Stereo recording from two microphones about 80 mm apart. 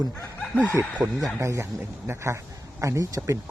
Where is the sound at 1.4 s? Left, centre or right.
Right.